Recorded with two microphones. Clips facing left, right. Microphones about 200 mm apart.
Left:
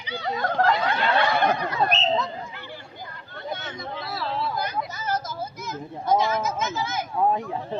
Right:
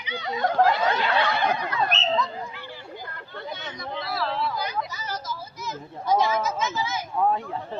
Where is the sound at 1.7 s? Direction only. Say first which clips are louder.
Left 2 dB; 50° left (ahead or behind).